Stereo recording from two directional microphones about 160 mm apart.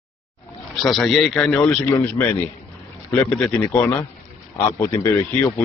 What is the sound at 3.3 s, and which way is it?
Speech, 5° left (ahead or behind).